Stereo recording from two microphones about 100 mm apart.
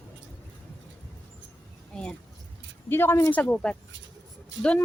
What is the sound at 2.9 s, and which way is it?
Speech, 20° left (ahead or behind).